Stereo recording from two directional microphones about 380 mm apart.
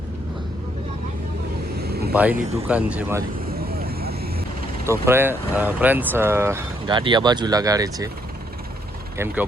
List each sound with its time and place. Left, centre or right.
1.8 s vehicle: right
2.1 s speech: centre
3.5 s vehicle: right
4.9 s speech: centre
9.1 s speech: centre